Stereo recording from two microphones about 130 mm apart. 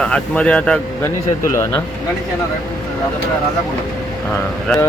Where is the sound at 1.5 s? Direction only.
20° left (ahead or behind).